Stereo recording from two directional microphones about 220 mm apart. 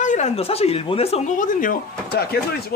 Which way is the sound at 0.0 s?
35° left (ahead or behind).